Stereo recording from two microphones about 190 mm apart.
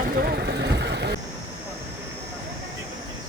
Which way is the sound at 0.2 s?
55° right (ahead or behind).